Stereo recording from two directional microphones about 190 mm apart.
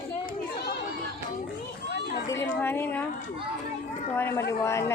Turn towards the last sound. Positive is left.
turn(degrees=15)  # may be behind; listen again after turning